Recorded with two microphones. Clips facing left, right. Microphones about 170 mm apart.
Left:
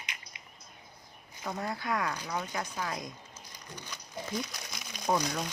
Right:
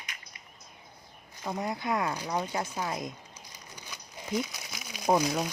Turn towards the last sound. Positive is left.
turn(degrees=-10)  # may be behind; listen again after turning